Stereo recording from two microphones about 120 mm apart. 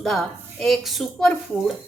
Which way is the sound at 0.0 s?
Centre (ahead or behind).